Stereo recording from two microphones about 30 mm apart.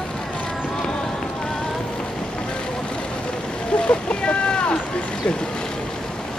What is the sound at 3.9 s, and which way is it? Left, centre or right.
Boat, left.